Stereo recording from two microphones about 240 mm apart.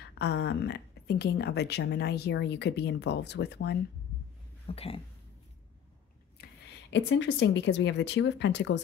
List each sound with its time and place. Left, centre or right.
0.2 s a woman's voice: left
4.6 s speech: left
6.4 s a sound: left
6.9 s a woman's voice: left